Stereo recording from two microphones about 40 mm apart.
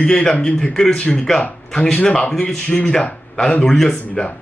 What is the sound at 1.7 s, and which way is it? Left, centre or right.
Speech, left.